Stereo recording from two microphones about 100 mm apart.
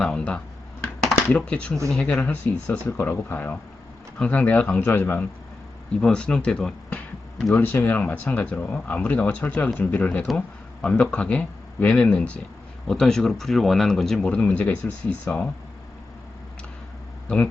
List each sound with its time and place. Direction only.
0.0 s speech: 5° left (ahead or behind); by 5.2 s 25° left (ahead or behind)
5.9 s speech: 10° left (ahead or behind)
7.5 s speech: 20° left (ahead or behind)
17.2 s speech: 15° left (ahead or behind)